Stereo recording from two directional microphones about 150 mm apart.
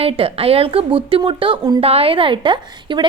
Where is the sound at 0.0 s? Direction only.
40° right (ahead or behind).